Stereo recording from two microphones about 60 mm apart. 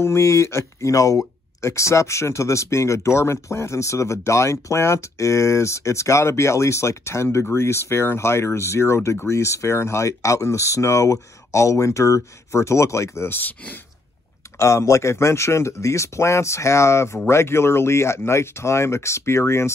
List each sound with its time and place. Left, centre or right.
0.0 s speech: left
13.4 s speech: left
14.6 s speech: left